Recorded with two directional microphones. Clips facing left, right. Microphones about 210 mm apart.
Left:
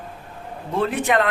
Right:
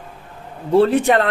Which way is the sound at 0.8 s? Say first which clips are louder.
Right 5 dB; 35° right (ahead or behind).